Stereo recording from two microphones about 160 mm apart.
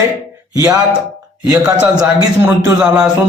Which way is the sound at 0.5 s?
20° right (ahead or behind).